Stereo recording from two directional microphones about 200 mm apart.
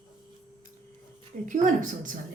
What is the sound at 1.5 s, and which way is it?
Speech, 40° right (ahead or behind).